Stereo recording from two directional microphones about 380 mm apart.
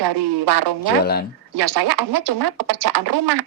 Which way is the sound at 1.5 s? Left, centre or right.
Right.